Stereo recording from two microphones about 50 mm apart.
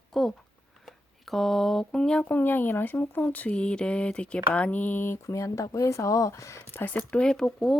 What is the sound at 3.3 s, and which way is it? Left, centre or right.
Speech, left.